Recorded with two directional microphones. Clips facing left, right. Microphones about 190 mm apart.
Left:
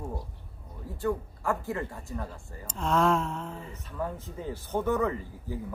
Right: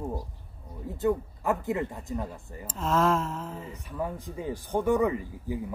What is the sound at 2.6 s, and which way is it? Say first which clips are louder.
Speech: even; centre (ahead or behind).